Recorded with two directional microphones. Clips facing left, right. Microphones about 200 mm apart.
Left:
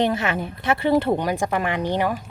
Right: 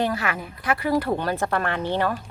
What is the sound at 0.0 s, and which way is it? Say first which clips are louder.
Speech: left 3 dB; 25° left (ahead or behind).